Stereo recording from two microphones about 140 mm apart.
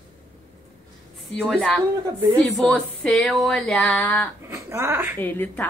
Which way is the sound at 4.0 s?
10° left (ahead or behind).